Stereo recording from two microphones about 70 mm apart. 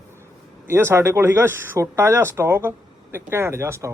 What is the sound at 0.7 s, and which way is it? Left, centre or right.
Speech, right.